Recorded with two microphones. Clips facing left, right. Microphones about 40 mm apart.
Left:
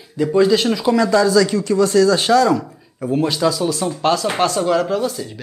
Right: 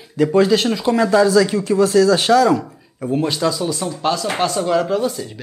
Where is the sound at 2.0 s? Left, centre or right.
Right.